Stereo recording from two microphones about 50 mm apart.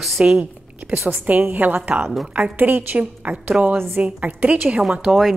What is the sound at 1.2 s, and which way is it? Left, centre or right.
A woman's voice, right.